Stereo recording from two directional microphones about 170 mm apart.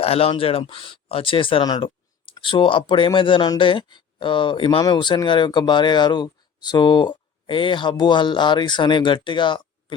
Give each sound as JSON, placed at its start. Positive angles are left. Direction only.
{"t": 0.0, "sound": "speech", "side_deg": 35}